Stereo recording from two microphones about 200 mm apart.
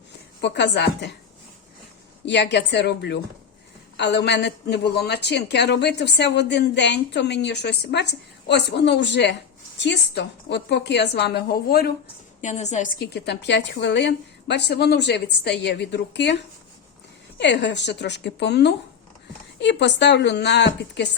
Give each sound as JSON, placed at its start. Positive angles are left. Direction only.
{"t": 0.4, "sound": "a woman's voice", "side_deg": 60}
{"t": 2.2, "sound": "a woman's voice", "side_deg": 60}
{"t": 12.4, "sound": "a woman's voice", "side_deg": 35}